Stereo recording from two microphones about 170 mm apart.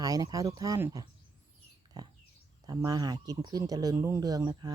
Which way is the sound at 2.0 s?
20° right (ahead or behind).